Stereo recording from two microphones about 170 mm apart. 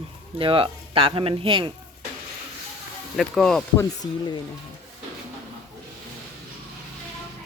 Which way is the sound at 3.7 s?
20° left (ahead or behind).